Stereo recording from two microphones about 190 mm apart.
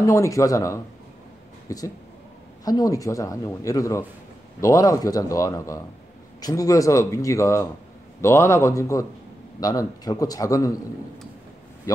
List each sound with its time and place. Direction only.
0.0 s a man's voice: 15° left (ahead or behind)